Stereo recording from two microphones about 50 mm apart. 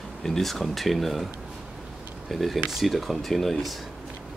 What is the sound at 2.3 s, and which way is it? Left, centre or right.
Speech, centre.